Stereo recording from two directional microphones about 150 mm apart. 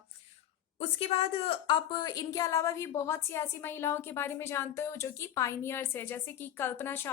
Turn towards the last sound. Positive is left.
turn(degrees=15)  # may be behind; listen again after turning